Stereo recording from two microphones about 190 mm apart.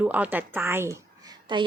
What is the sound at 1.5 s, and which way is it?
Speech, 25° right (ahead or behind).